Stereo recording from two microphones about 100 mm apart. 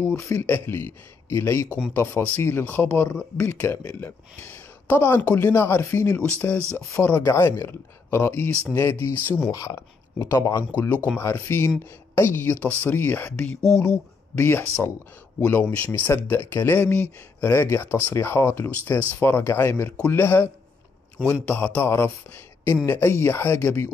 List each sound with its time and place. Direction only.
0.0 s speech: 25° left (ahead or behind)
9.5 s speech: 35° left (ahead or behind); by 14.4 s 10° left (ahead or behind)
14.4 s speech: 20° left (ahead or behind)
21.5 s speech: 15° left (ahead or behind)